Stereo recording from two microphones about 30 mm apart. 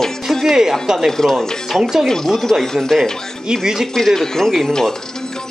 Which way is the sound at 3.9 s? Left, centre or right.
Centre.